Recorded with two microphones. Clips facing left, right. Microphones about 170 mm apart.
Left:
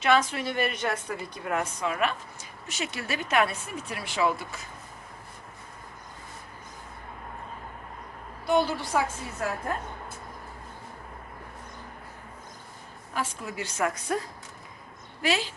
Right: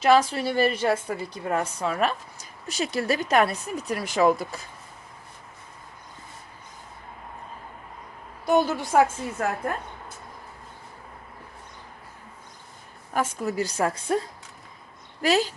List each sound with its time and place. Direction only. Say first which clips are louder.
0.0 s a woman's voice: right 4 dB; 35° right (ahead or behind)
8.4 s a woman's voice: right 3 dB; 45° right (ahead or behind)
13.1 s a woman's voice: right 7 dB; 40° right (ahead or behind)
15.2 s a woman's voice: right 6 dB; 40° right (ahead or behind)